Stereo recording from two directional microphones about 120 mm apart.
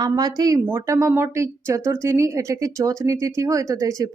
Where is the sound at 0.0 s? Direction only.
35° right (ahead or behind).